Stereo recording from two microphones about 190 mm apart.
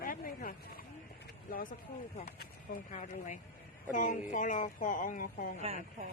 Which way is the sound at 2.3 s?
55° left (ahead or behind).